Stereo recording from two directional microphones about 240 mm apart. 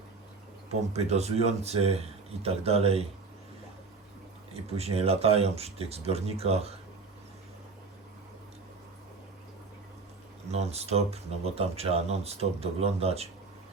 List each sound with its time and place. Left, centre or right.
0.7 s speech: right
4.5 s speech: right
10.5 s speech: right